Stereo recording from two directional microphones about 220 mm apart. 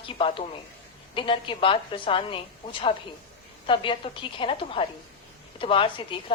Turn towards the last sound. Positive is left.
turn(degrees=25)  # may be behind; listen again after turning